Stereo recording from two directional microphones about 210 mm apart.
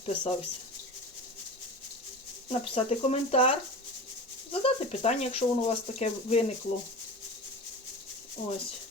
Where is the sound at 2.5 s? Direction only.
25° left (ahead or behind).